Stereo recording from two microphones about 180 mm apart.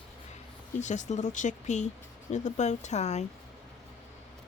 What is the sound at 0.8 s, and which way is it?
Speech, 40° left (ahead or behind).